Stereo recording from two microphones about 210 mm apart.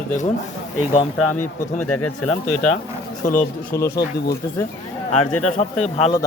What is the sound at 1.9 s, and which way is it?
Speech, 90° left.